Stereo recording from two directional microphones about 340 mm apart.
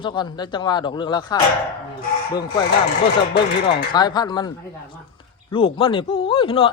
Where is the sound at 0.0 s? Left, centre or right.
Centre.